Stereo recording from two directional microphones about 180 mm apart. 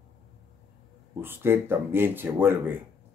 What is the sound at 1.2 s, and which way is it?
Speech, 10° right (ahead or behind).